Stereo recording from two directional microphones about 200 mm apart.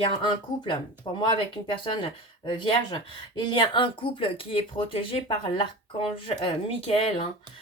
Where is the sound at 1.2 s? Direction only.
25° left (ahead or behind).